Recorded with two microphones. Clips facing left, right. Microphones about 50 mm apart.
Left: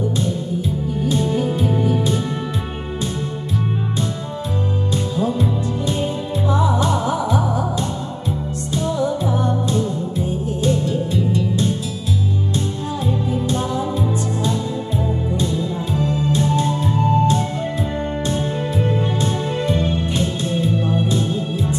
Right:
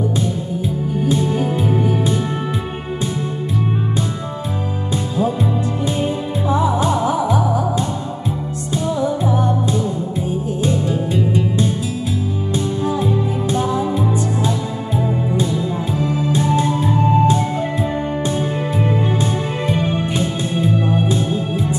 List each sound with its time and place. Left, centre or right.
1.0 s music: centre
4.9 s music: centre
12.8 s music: centre
18.8 s music: right